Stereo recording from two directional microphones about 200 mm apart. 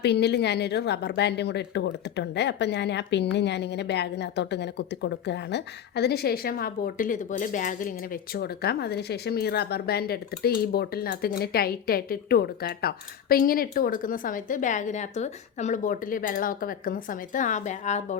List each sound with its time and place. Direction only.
0.0 s a woman's voice: 55° left (ahead or behind); by 18.2 s 35° left (ahead or behind)